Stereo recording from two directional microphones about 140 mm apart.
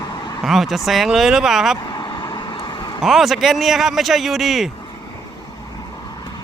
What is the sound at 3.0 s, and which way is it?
Speech, centre (ahead or behind).